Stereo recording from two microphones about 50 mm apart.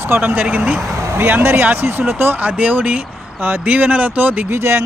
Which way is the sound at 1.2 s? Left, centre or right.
Right.